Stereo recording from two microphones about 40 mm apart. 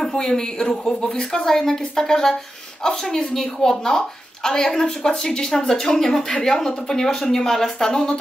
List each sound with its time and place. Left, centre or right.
0.1 s a woman's voice: centre